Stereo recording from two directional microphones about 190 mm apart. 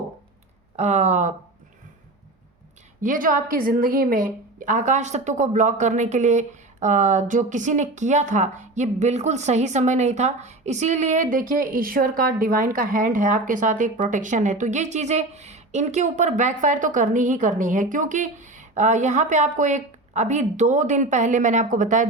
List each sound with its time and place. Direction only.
0.8 s a woman's voice: 35° right (ahead or behind)
3.0 s a woman's voice: 45° right (ahead or behind)